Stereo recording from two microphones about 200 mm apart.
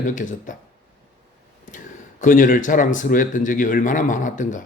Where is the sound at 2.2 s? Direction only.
40° left (ahead or behind).